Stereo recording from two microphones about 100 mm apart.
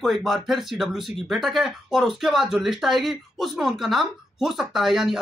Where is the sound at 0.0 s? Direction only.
Centre (ahead or behind).